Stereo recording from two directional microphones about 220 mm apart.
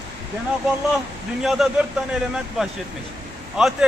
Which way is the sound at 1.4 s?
Centre (ahead or behind).